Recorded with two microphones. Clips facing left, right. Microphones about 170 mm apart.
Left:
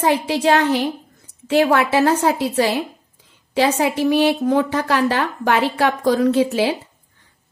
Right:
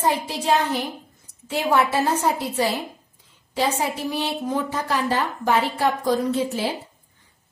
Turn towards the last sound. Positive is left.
turn(degrees=75)  # may be behind; listen again after turning